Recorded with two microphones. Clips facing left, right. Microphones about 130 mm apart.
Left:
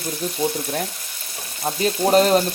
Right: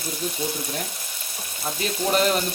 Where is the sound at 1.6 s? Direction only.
40° left (ahead or behind).